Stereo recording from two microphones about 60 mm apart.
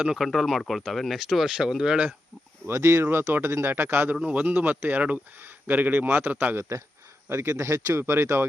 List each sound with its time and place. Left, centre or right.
0.2 s speech: centre
2.6 s speech: right
4.2 s speech: right
6.6 s speech: right